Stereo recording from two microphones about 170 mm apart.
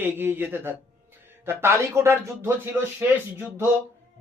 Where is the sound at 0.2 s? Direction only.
15° right (ahead or behind).